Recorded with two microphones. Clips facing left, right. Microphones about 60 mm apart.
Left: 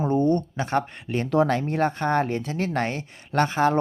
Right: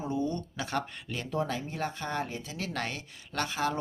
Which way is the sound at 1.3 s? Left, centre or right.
Left.